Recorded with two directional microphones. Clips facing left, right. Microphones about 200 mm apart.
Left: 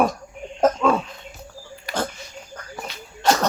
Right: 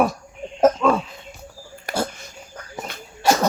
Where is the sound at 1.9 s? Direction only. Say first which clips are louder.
Right 2 dB; 50° right (ahead or behind).